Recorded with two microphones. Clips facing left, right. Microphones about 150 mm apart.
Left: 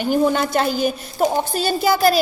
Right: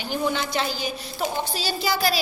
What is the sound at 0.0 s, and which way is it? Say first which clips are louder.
A woman's voice: left 8 dB; 50° left (ahead or behind).